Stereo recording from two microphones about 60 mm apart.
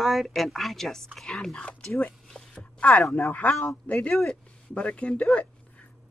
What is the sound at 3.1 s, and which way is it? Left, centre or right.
Speech, left.